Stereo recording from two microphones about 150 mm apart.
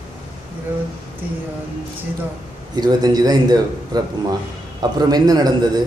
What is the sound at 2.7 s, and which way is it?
A man's voice, 25° right (ahead or behind).